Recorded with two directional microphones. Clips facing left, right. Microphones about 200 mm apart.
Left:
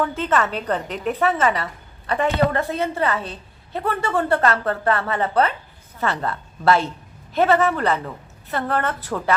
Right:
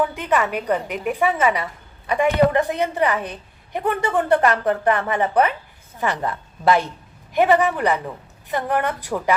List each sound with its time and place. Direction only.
0.0 s a woman's voice: 15° right (ahead or behind)